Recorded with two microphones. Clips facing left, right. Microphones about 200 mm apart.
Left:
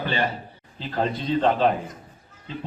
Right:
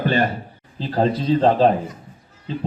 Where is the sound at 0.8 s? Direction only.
35° right (ahead or behind).